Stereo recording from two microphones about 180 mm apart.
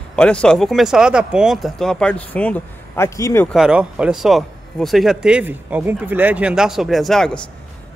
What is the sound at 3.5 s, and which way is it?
A man's voice, 5° right (ahead or behind).